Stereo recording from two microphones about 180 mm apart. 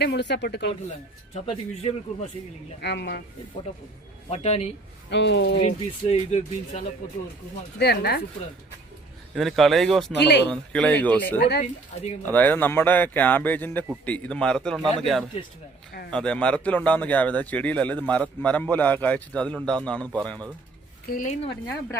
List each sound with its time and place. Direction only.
0.0 s speech: 70° left (ahead or behind)
1.3 s speech: 35° left (ahead or behind)
2.8 s speech: 65° left (ahead or behind)
4.3 s speech: 35° left (ahead or behind)
5.1 s speech: 75° left (ahead or behind)
5.6 s speech: 35° left (ahead or behind)
7.8 s speech: 65° left (ahead or behind)
9.3 s a man's voice: centre (ahead or behind)
10.1 s speech: 70° left (ahead or behind)
10.5 s speech: 5° left (ahead or behind)
11.3 s speech: 65° left (ahead or behind)
12.3 s a man's voice: 10° left (ahead or behind)
21.1 s speech: 50° left (ahead or behind)